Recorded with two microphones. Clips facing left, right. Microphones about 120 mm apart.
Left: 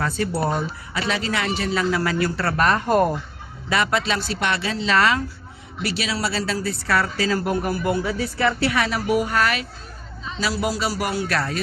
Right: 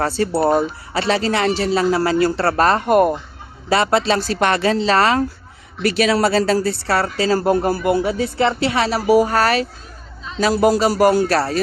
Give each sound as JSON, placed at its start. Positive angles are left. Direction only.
{"t": 0.2, "sound": "speech", "side_deg": -35}
{"t": 2.8, "sound": "speech", "side_deg": -15}
{"t": 3.7, "sound": "speech", "side_deg": -35}
{"t": 5.8, "sound": "speech", "side_deg": -50}